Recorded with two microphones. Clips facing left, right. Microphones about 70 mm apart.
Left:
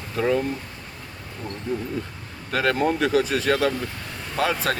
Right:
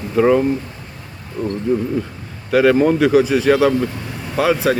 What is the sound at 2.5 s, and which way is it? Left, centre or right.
Speech, centre.